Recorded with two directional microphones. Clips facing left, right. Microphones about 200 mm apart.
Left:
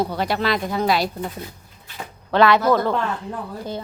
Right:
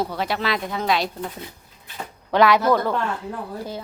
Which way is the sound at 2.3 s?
10° right (ahead or behind).